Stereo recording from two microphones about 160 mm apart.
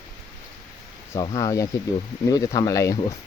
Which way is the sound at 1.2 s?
25° left (ahead or behind).